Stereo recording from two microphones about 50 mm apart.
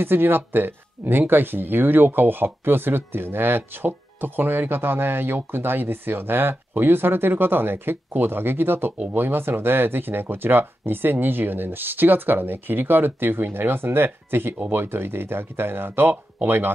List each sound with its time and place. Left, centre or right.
0.0 s speech: right